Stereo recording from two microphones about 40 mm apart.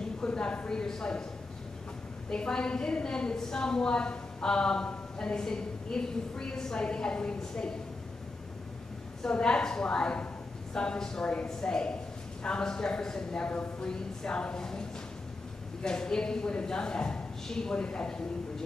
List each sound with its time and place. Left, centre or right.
0.2 s a woman's voice: left
2.2 s a woman's voice: centre
9.2 s a woman's voice: left